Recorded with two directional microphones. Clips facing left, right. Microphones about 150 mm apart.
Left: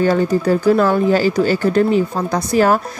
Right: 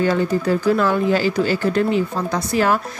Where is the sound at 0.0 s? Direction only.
40° left (ahead or behind).